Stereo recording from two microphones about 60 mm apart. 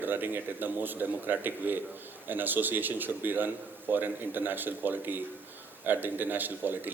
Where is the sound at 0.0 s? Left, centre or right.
Right.